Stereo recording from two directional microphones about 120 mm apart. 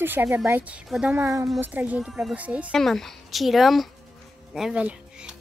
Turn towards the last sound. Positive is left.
turn(degrees=-10)  # may be behind; listen again after turning